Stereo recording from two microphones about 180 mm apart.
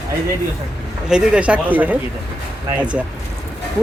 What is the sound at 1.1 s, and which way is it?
Speech, 5° right (ahead or behind).